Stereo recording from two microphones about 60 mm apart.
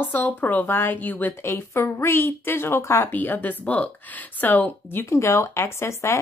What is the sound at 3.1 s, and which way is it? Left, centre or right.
Speech, left.